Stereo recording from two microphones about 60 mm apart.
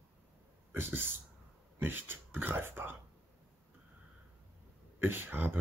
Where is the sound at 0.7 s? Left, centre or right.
Right.